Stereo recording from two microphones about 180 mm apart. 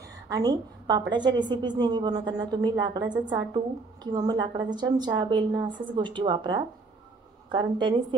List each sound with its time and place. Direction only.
0.3 s a woman's voice: 20° right (ahead or behind)